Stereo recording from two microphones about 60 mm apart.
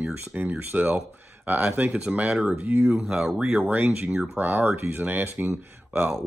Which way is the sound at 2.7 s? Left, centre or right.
Right.